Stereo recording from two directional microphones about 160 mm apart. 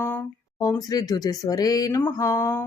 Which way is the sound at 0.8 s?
25° left (ahead or behind).